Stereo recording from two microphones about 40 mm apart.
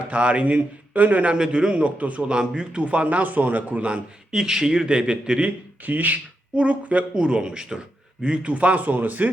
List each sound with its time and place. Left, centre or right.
0.1 s a man's voice: right
1.3 s speech: right
2.0 s a man's voice: right
2.3 s speech: centre
2.8 s a man's voice: right
4.3 s speech: centre
5.8 s speech: right
6.6 s a man's voice: right
7.1 s a man's voice: right